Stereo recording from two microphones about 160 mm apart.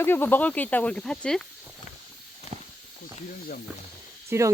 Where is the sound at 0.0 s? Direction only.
10° left (ahead or behind).